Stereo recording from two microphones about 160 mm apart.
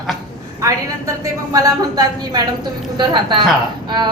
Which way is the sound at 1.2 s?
20° right (ahead or behind).